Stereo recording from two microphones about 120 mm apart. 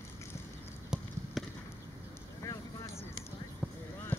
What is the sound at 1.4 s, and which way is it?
Basketball bounce, centre (ahead or behind).